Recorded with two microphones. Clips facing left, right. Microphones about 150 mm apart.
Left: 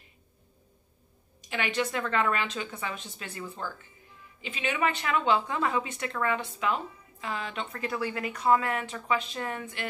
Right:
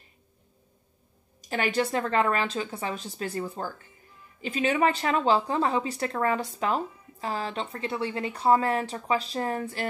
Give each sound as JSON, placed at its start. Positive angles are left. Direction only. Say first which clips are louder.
{"t": 1.5, "sound": "speech", "louder": "right 4 dB", "side_deg": -40}